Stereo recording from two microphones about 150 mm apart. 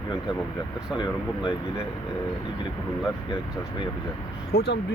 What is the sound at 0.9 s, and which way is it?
Speech, 30° left (ahead or behind).